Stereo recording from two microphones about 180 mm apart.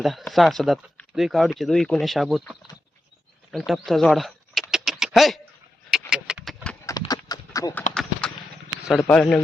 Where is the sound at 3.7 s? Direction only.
Centre (ahead or behind).